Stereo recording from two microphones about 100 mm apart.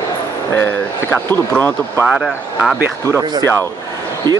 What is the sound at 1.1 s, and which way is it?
Speech, 20° left (ahead or behind).